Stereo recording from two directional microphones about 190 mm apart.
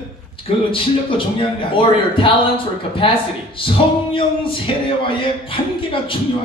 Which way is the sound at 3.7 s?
30° left (ahead or behind).